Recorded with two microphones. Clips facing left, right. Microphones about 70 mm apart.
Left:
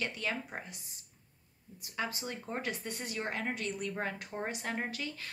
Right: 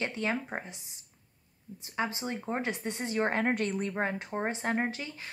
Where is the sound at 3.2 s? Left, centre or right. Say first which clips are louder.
Right 9 dB; right.